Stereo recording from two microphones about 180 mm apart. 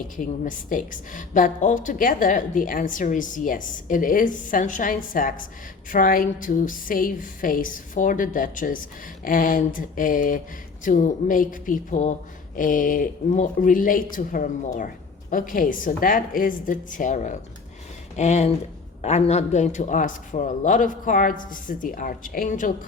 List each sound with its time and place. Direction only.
0.2 s a woman's voice: 45° left (ahead or behind)